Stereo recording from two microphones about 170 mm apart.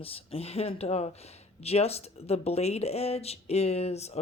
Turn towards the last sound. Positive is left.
turn(degrees=40)  # may be behind; listen again after turning